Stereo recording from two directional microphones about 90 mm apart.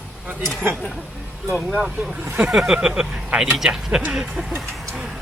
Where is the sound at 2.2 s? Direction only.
20° right (ahead or behind).